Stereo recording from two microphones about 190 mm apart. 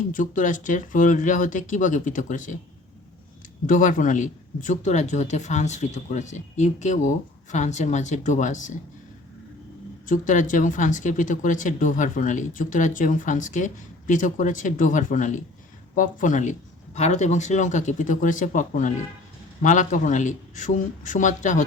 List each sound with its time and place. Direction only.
0.1 s speech: 45° left (ahead or behind)
3.7 s speech: 45° left (ahead or behind)
10.1 s speech: 45° left (ahead or behind)